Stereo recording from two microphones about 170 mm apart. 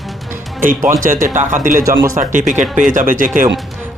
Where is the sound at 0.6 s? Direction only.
50° right (ahead or behind).